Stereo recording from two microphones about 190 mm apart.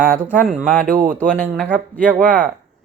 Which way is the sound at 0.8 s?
45° right (ahead or behind).